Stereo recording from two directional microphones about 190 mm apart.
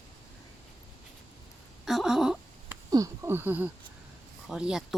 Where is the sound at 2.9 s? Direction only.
15° right (ahead or behind).